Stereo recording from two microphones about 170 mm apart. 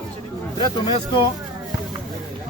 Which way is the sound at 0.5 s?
25° left (ahead or behind).